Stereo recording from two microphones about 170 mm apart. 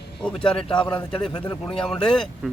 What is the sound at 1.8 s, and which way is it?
Speech, 5° left (ahead or behind).